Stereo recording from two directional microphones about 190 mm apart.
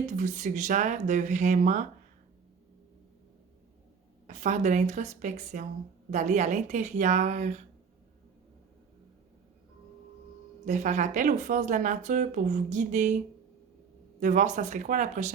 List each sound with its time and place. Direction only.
0.0 s speech: 40° right (ahead or behind)
4.3 s speech: 40° right (ahead or behind)
10.7 s speech: 40° right (ahead or behind)
14.2 s speech: 40° right (ahead or behind)